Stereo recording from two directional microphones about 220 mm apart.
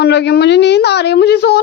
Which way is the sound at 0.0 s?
50° left (ahead or behind).